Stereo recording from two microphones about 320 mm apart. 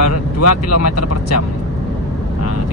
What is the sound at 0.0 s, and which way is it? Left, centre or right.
Speech, left.